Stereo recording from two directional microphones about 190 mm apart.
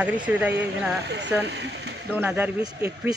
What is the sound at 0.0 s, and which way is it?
Speech, 5° right (ahead or behind).